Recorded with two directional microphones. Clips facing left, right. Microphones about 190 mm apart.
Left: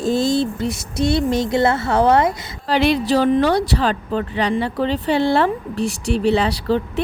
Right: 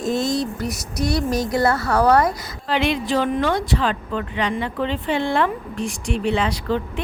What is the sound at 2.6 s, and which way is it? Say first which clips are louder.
Speech: left 4 dB; 35° left (ahead or behind).